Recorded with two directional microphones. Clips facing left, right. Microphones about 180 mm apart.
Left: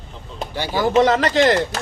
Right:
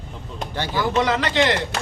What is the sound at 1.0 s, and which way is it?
Speech, 45° left (ahead or behind).